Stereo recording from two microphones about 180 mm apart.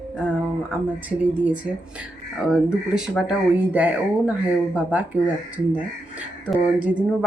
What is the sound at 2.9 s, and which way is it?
Speech, 5° right (ahead or behind).